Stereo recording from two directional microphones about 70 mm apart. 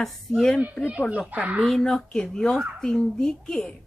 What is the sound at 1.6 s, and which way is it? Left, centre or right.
A woman's voice, centre.